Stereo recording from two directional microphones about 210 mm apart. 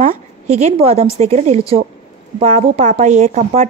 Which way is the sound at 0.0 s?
35° right (ahead or behind).